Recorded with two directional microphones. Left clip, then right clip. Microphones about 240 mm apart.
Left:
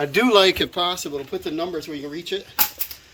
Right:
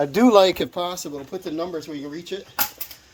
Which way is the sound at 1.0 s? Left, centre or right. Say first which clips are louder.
Left 4 dB; right.